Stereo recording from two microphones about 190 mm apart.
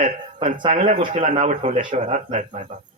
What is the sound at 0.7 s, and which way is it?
Speech, 40° right (ahead or behind).